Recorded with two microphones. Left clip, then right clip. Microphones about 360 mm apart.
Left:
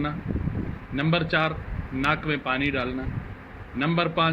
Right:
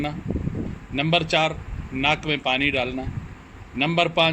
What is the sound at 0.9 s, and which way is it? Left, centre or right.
Speech, centre.